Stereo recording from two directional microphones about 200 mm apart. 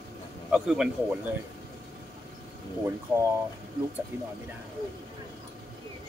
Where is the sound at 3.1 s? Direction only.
5° right (ahead or behind).